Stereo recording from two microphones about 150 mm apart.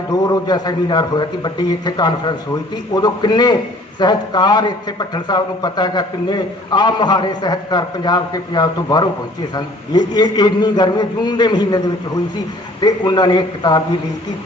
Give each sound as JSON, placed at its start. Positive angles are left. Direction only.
{"t": 0.1, "sound": "a man's voice", "side_deg": 25}
{"t": 12.8, "sound": "a man's voice", "side_deg": 30}